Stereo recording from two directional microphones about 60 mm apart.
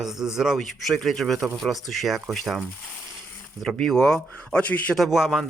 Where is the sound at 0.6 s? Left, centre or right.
Centre.